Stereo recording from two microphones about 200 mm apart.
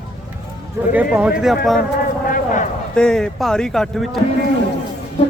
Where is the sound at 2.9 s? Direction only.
5° left (ahead or behind).